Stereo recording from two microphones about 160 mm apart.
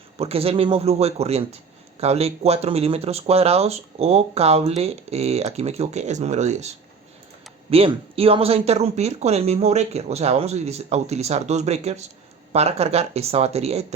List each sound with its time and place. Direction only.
0.2 s speech: 40° right (ahead or behind)